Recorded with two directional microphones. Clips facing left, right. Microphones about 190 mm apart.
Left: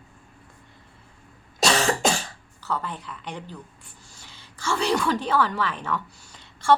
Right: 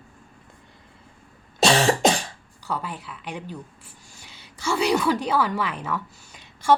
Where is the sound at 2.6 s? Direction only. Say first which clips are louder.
Even; 10° right (ahead or behind).